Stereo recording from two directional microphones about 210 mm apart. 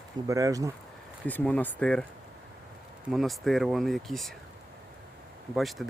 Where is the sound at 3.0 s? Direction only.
Centre (ahead or behind).